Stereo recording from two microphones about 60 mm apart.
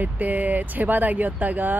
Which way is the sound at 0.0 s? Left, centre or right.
Right.